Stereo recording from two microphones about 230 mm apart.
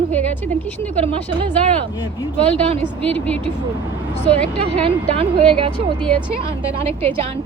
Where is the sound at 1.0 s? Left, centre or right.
Right.